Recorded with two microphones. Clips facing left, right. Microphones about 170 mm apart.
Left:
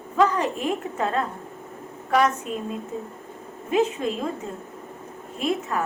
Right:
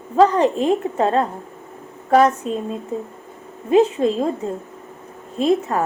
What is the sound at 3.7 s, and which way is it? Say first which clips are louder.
Speech: right 7 dB; 35° right (ahead or behind).